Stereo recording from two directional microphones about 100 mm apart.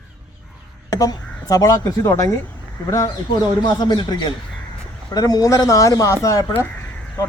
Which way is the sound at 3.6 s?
50° left (ahead or behind).